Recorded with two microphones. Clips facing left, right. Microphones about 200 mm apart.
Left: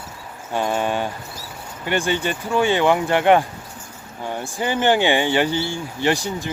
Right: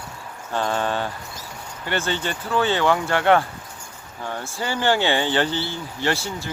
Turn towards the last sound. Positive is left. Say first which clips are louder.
# left 4 dB
turn(degrees=15)  # may be behind; listen again after turning